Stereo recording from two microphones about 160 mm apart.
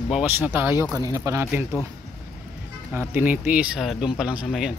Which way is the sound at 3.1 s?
10° right (ahead or behind).